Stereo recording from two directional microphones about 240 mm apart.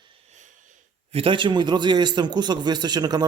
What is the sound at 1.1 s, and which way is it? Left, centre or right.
A man's voice, right.